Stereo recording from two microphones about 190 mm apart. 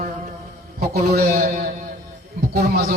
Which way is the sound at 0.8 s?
55° right (ahead or behind).